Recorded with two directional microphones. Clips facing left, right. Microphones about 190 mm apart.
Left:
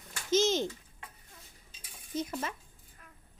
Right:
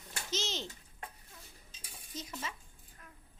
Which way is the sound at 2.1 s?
55° left (ahead or behind).